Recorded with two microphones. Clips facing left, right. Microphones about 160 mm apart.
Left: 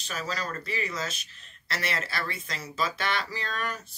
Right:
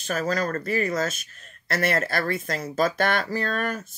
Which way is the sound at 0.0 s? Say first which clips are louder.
Right 9 dB; 50° right (ahead or behind).